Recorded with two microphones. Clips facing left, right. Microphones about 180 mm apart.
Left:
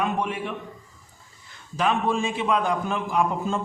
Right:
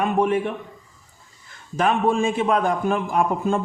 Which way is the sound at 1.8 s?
50° right (ahead or behind).